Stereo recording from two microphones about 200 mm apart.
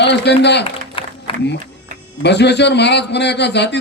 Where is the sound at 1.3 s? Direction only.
25° left (ahead or behind).